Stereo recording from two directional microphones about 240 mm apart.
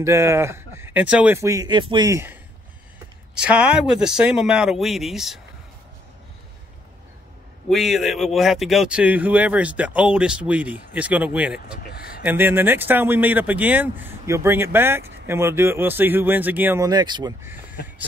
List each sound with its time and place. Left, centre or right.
0.0 s speech: centre
3.3 s speech: centre
7.7 s speech: centre
11.8 s speech: left
12.2 s speech: centre